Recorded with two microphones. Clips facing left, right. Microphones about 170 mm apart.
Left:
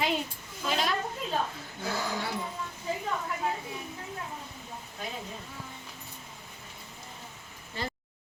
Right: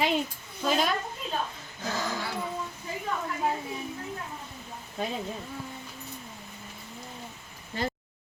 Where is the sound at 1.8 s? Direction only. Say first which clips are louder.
Right 1 dB; 15° left (ahead or behind).